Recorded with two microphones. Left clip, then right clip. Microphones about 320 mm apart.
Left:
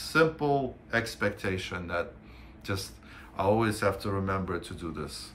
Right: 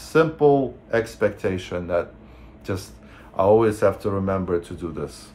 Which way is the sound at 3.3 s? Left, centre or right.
Centre.